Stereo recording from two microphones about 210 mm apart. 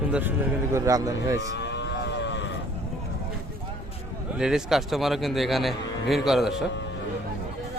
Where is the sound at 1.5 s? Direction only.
55° left (ahead or behind).